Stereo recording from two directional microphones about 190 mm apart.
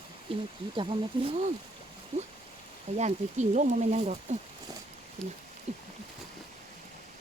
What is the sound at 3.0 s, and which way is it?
Speech, 40° right (ahead or behind).